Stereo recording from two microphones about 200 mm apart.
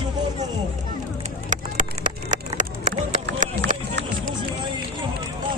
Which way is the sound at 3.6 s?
60° right (ahead or behind).